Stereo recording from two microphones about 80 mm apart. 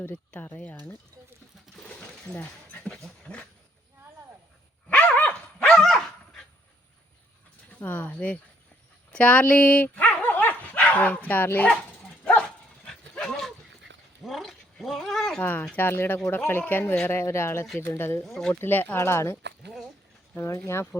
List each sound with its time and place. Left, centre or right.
0.1 s speech: centre
2.3 s dog: centre
3.3 s speech: centre
4.9 s dog: centre
7.7 s speech: left
12.2 s dog: centre
14.2 s cat: centre
15.4 s speech: left
18.2 s speech: centre
18.6 s speech: left